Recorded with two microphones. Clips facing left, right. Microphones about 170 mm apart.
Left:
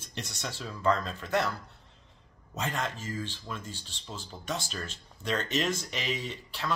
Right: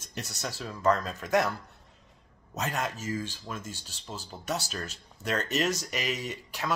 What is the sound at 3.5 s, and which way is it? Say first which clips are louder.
Speech: right 1 dB; 45° right (ahead or behind).